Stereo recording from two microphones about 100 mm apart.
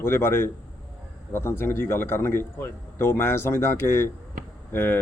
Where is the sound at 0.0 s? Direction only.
25° left (ahead or behind).